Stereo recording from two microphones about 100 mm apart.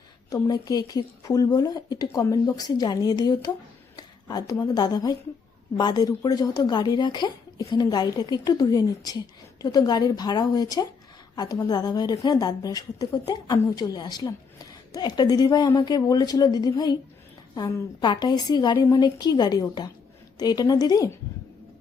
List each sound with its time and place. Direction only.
0.3 s a woman's voice: 35° left (ahead or behind)
3.9 s a sound: 40° left (ahead or behind)
4.6 s a woman's voice: 40° left (ahead or behind)